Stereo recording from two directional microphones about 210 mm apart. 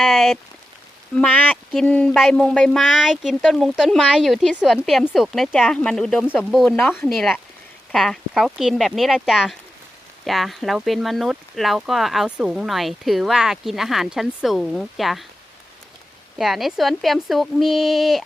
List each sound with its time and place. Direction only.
0.0 s speech: centre (ahead or behind)
16.4 s speech: centre (ahead or behind)